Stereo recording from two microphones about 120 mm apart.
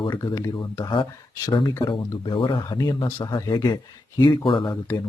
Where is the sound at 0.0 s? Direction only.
45° left (ahead or behind).